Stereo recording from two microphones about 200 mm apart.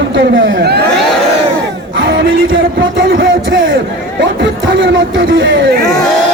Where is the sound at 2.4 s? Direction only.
70° right (ahead or behind).